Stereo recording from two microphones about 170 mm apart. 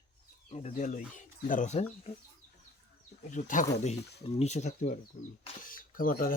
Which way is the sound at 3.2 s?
50° left (ahead or behind).